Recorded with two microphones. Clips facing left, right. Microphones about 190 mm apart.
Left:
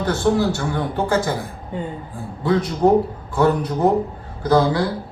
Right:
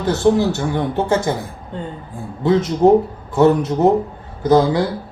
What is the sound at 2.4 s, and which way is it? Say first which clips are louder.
Speech: right 4 dB; 25° right (ahead or behind).